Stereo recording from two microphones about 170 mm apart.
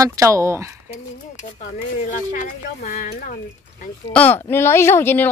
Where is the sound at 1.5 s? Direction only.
45° left (ahead or behind).